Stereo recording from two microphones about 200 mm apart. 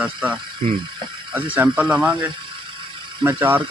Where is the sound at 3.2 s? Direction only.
10° right (ahead or behind).